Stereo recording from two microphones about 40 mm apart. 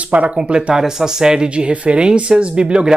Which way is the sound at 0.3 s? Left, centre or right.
Right.